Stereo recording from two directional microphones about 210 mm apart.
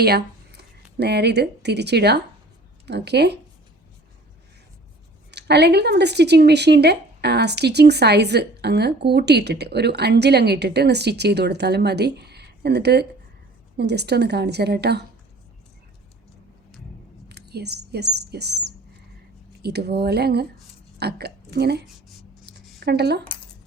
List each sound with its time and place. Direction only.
0.0 s speech: 50° right (ahead or behind)
5.3 s speech: 50° right (ahead or behind)
17.2 s a woman's voice: 50° right (ahead or behind)
22.4 s a sound: 50° right (ahead or behind)